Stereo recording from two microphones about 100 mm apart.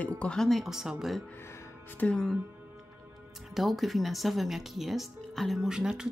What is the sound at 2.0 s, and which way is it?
Speech, 10° left (ahead or behind).